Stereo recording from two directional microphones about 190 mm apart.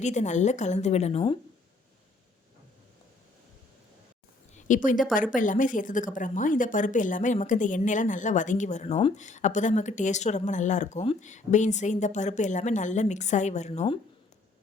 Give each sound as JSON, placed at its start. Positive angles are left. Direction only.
{"t": 0.0, "sound": "a woman's voice", "side_deg": 40}
{"t": 4.5, "sound": "a woman's voice", "side_deg": 40}